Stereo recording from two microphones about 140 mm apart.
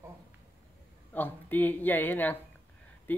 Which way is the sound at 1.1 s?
15° left (ahead or behind).